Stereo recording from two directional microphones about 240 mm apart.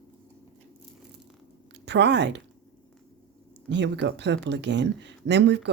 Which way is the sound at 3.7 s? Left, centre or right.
Right.